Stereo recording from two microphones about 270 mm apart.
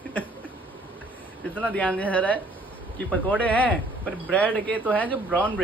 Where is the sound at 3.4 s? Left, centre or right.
Centre.